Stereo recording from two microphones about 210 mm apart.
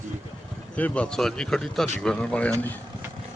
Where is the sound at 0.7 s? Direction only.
5° left (ahead or behind).